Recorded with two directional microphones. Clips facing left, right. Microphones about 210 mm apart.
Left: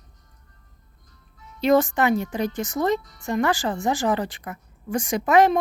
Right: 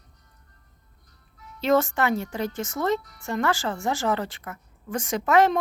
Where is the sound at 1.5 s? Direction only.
15° left (ahead or behind).